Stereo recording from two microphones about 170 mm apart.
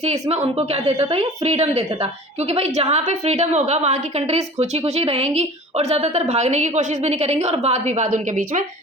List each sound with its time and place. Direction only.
0.0 s a woman's voice: 40° right (ahead or behind)